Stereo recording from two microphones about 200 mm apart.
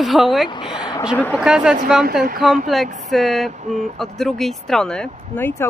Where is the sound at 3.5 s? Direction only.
35° right (ahead or behind).